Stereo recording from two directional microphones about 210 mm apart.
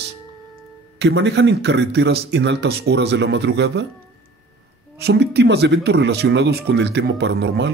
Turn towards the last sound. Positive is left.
turn(degrees=-55)  # may be behind; listen again after turning